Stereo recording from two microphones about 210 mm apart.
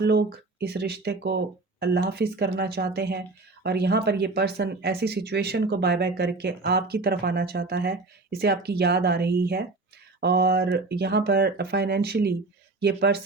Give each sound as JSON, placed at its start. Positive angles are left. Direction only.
{"t": 0.0, "sound": "speech", "side_deg": -50}